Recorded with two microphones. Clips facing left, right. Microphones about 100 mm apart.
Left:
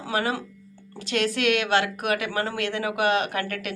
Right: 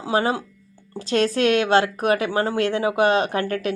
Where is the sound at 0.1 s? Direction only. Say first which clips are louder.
Right 5 dB; 30° right (ahead or behind).